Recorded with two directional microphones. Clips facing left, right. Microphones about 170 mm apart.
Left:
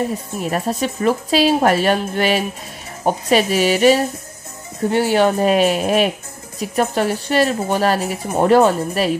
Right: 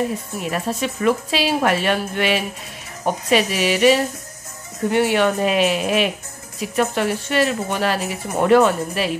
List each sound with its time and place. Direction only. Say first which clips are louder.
0.4 s speech: left 3 dB; 35° left (ahead or behind)